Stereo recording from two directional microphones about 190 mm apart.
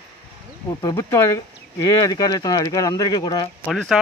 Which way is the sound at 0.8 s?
20° left (ahead or behind).